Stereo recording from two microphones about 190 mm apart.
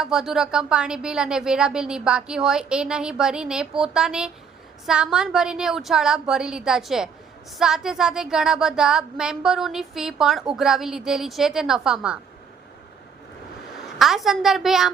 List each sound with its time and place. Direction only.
0.0 s speech: 5° right (ahead or behind)
14.0 s speech: centre (ahead or behind)